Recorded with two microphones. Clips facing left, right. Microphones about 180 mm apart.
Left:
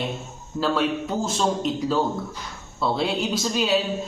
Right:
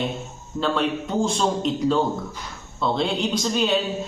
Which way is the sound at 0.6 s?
5° left (ahead or behind).